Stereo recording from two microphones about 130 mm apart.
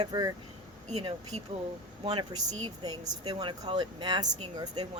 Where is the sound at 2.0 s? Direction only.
30° right (ahead or behind).